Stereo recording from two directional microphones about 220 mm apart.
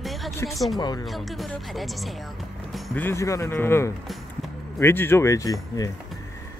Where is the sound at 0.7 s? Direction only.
20° left (ahead or behind).